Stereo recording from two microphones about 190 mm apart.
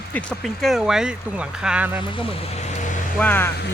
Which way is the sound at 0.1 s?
5° left (ahead or behind).